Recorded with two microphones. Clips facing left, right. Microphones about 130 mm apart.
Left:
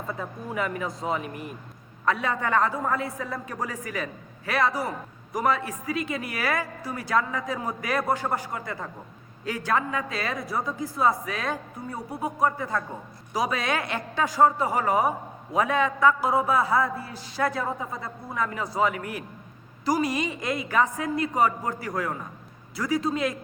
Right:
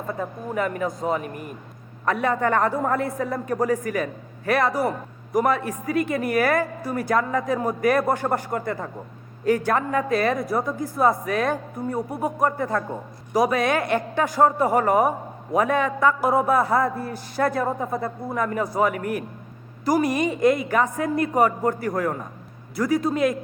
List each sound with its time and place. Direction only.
0.1 s a man's voice: 45° right (ahead or behind)